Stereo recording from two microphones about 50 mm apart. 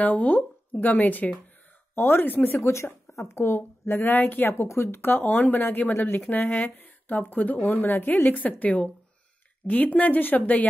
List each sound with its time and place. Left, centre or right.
0.0 s a woman's voice: left
2.0 s speech: left
2.2 s a woman's voice: left
2.6 s speech: left
3.5 s speech: left
4.6 s a woman's voice: left
8.3 s a woman's voice: left